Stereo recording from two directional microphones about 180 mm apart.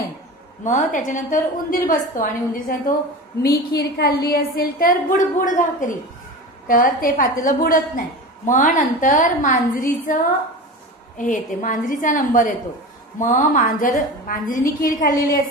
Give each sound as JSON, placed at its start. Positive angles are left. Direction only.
{"t": 0.7, "sound": "a woman's voice", "side_deg": 45}
{"t": 3.4, "sound": "a woman's voice", "side_deg": 60}